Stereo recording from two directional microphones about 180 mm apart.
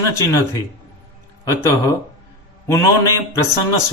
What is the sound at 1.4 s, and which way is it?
Speech, 15° left (ahead or behind).